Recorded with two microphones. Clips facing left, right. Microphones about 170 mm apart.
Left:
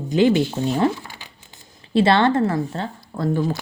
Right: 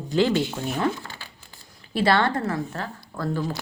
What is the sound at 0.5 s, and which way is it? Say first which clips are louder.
Speech: left 6 dB; 30° left (ahead or behind).